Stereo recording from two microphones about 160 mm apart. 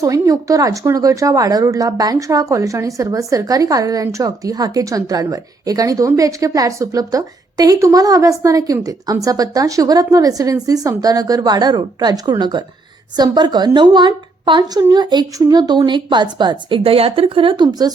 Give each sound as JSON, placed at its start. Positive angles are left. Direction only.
{"t": 0.0, "sound": "speech", "side_deg": -20}